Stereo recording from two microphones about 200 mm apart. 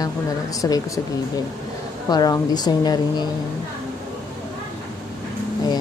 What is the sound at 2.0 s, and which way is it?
Speech, 20° left (ahead or behind).